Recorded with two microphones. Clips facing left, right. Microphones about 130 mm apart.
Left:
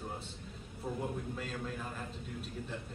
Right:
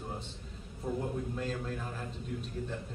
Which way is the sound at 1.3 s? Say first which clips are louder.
Right 4 dB; centre (ahead or behind).